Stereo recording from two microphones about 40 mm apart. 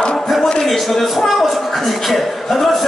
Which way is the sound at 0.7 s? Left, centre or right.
Centre.